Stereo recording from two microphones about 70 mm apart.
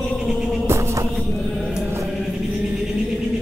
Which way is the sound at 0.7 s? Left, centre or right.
Right.